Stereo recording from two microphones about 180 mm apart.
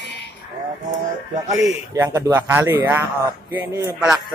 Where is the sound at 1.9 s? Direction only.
15° right (ahead or behind).